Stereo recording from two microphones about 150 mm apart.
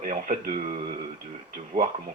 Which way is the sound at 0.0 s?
60° right (ahead or behind).